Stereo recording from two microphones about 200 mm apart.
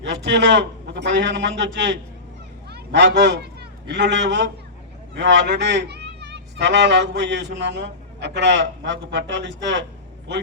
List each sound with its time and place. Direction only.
0.0 s a man's voice: 60° right (ahead or behind)